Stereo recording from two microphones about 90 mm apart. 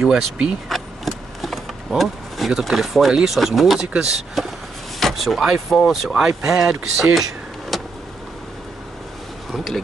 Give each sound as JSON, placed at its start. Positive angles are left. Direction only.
{"t": 0.0, "sound": "speech", "side_deg": -5}
{"t": 7.7, "sound": "vehicle", "side_deg": 0}